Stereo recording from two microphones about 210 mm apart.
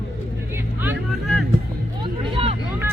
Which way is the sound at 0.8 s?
5° right (ahead or behind).